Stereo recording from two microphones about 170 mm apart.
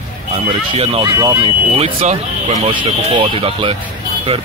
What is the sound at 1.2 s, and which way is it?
Speech, 25° right (ahead or behind).